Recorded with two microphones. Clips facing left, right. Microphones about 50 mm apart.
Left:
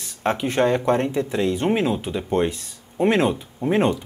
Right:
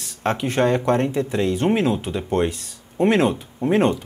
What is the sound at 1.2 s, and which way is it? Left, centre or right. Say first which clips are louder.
Speech: right 1 dB; left.